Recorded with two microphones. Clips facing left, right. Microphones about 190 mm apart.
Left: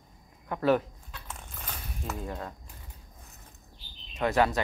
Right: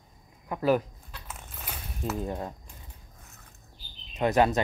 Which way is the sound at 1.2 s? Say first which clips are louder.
Right 1 dB; 5° right (ahead or behind).